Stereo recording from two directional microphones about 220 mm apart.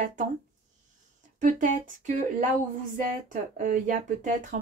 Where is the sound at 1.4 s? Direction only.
35° right (ahead or behind).